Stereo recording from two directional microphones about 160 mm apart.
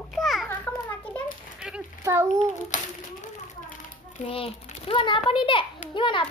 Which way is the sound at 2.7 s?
50° left (ahead or behind).